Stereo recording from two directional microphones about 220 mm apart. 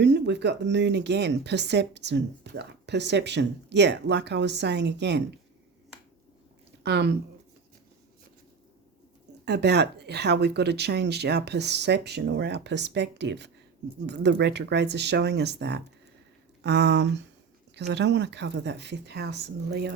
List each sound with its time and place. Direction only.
0.0 s speech: 50° right (ahead or behind)
6.8 s speech: 50° right (ahead or behind)
9.4 s speech: 50° right (ahead or behind)